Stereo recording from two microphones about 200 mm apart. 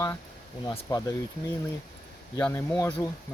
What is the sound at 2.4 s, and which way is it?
Speech, 10° left (ahead or behind).